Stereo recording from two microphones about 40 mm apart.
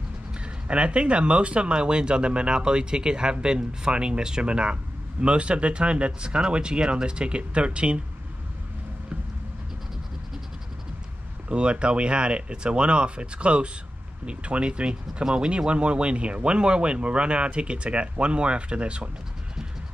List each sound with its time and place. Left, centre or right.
0.4 s speech: right
11.4 s speech: right